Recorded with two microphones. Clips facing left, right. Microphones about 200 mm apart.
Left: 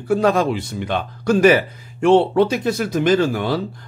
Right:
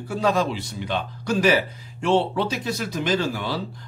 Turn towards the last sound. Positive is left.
turn(degrees=55)  # may be behind; listen again after turning